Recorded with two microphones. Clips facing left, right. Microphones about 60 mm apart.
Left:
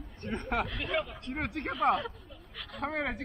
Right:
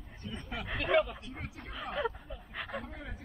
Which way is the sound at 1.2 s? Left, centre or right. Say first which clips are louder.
Left 10 dB; left.